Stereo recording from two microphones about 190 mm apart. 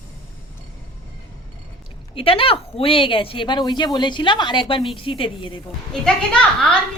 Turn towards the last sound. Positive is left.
turn(degrees=5)  # may be behind; listen again after turning